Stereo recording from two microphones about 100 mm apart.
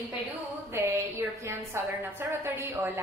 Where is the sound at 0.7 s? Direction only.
25° right (ahead or behind).